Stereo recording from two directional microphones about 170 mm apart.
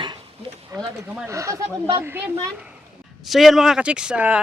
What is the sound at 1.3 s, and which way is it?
Speech, 20° right (ahead or behind).